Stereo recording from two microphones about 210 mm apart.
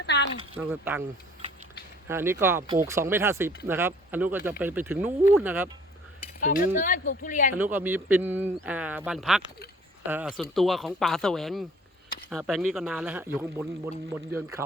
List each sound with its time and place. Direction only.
0.0 s a sound: 55° left (ahead or behind)
0.7 s speech: 10° right (ahead or behind)
2.0 s speech: 10° right (ahead or behind)
6.7 s speech: 40° left (ahead or behind)
7.6 s speech: 10° right (ahead or behind)